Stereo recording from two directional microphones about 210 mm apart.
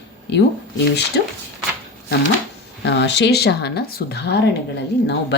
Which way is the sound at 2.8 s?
55° left (ahead or behind).